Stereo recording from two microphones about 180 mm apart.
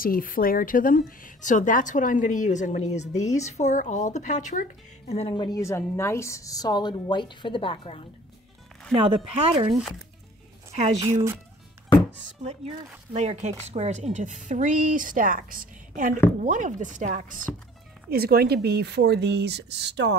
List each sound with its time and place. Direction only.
0.0 s speech: 50° left (ahead or behind)
5.1 s a woman's voice: 30° left (ahead or behind)
5.6 s a woman's voice: 15° left (ahead or behind)
8.9 s speech: 30° right (ahead or behind)
10.7 s speech: 35° right (ahead or behind)
12.4 s speech: 35° right (ahead or behind)
18.1 s speech: 60° right (ahead or behind)